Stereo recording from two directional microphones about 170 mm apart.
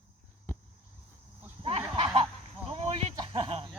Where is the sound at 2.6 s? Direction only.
35° right (ahead or behind).